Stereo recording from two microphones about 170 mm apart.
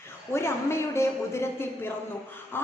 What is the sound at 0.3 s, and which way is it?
A woman's voice, 15° left (ahead or behind).